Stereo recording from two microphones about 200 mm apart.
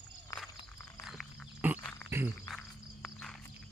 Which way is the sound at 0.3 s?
15° left (ahead or behind).